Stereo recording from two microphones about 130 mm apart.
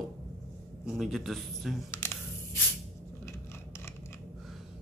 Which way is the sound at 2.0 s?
15° left (ahead or behind).